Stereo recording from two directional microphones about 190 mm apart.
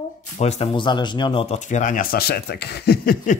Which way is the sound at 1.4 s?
40° left (ahead or behind).